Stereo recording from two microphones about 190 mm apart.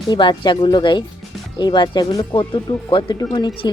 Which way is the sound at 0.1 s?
25° left (ahead or behind).